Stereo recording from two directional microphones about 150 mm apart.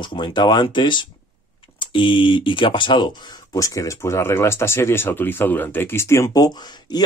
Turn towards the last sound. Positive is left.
turn(degrees=25)  # may be behind; listen again after turning